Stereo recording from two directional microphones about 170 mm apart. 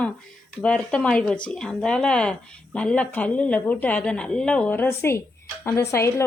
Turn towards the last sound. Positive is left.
turn(degrees=15)  # may be behind; listen again after turning